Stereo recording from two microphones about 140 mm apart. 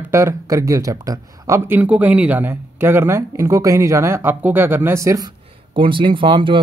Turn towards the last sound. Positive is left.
turn(degrees=-35)  # may be behind; listen again after turning